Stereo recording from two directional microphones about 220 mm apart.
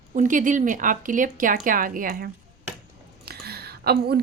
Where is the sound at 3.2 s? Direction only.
45° right (ahead or behind).